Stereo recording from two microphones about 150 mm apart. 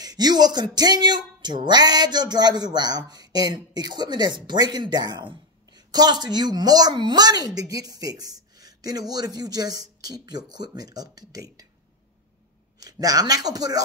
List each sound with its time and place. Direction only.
0.0 s speech: 25° right (ahead or behind)
12.8 s speech: 25° right (ahead or behind)